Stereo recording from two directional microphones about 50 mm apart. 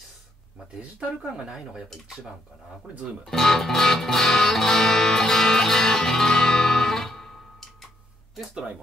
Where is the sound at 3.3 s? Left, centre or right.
Centre.